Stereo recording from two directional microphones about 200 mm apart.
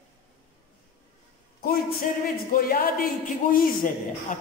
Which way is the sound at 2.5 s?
45° left (ahead or behind).